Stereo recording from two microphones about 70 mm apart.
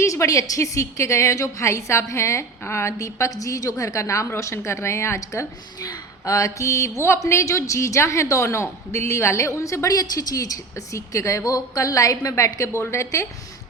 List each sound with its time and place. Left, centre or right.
0.0 s speech: left